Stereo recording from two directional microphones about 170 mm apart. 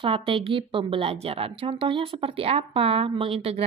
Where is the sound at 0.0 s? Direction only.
30° right (ahead or behind).